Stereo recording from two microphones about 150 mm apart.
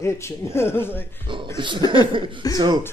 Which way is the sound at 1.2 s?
35° right (ahead or behind).